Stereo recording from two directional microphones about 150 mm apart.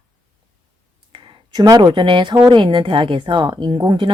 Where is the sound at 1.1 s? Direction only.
35° right (ahead or behind).